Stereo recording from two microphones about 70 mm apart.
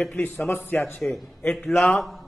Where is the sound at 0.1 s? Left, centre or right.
Left.